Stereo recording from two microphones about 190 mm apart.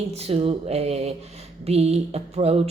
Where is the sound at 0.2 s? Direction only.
30° right (ahead or behind).